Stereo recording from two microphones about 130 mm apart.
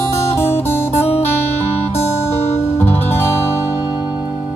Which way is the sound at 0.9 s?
50° left (ahead or behind).